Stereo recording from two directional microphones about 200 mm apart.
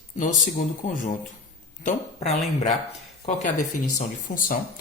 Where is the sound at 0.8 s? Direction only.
40° left (ahead or behind).